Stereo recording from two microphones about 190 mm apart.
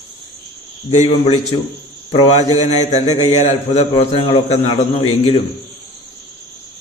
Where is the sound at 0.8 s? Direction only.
35° left (ahead or behind).